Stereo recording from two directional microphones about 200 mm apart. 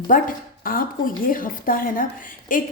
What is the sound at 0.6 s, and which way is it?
A woman's voice, 45° left (ahead or behind).